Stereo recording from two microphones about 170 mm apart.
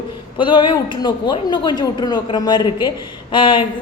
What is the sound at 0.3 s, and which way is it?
A woman's voice, 25° left (ahead or behind).